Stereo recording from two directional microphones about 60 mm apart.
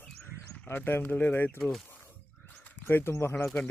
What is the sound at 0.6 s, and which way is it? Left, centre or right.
Speech, left.